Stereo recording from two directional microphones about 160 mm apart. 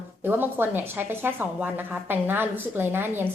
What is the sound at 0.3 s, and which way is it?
A woman's voice, 15° right (ahead or behind).